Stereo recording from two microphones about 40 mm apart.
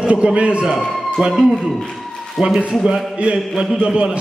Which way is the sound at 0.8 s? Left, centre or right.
Centre.